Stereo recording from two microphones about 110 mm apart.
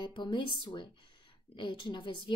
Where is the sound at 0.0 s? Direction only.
45° left (ahead or behind).